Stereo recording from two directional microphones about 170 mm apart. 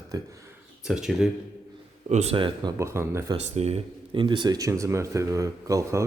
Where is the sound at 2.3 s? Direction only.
30° right (ahead or behind).